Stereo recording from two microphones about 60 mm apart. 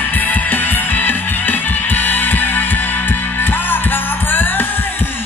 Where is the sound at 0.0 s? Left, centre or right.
Left.